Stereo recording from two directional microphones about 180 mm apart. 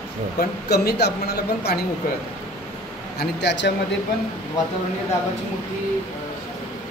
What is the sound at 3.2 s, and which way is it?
Speech, 70° left (ahead or behind).